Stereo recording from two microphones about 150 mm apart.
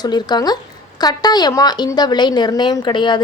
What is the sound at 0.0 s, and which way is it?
A woman's voice, 30° left (ahead or behind).